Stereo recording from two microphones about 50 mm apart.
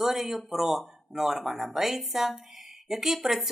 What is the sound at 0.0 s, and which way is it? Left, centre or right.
Speech, centre.